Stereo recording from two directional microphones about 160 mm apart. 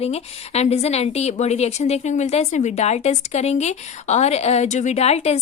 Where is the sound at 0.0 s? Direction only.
40° left (ahead or behind).